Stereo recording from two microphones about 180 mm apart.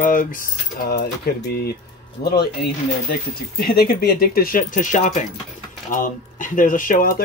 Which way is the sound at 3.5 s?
60° left (ahead or behind).